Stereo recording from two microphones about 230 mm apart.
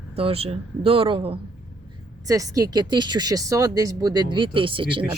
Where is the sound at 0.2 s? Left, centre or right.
Right.